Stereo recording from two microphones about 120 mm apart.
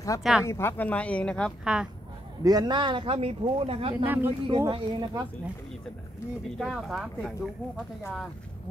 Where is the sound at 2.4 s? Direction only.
35° right (ahead or behind).